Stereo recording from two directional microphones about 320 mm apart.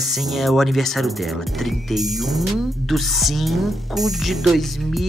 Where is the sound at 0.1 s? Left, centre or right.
Centre.